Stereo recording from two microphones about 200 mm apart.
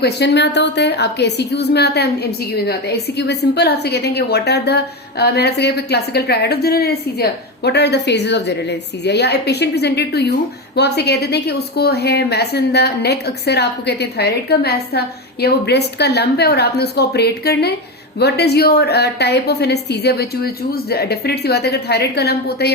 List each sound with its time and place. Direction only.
0.0 s a woman's voice: 60° left (ahead or behind)